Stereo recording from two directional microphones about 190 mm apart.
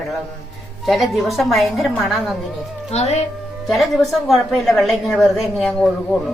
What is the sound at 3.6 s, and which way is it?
A woman's voice, centre (ahead or behind).